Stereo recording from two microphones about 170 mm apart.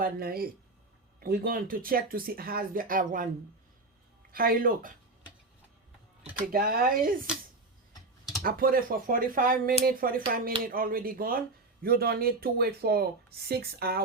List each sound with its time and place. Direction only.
0.0 s speech: 60° right (ahead or behind)
4.3 s speech: 60° right (ahead or behind)
6.4 s speech: 60° right (ahead or behind)
8.4 s speech: 60° right (ahead or behind)